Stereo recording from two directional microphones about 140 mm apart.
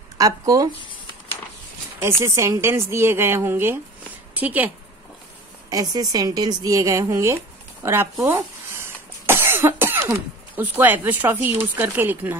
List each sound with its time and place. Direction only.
0.2 s speech: 25° right (ahead or behind)
2.0 s a woman's voice: 20° right (ahead or behind)
5.7 s speech: 25° right (ahead or behind)